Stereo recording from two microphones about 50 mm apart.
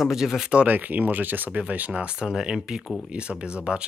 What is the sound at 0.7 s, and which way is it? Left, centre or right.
Speech, right.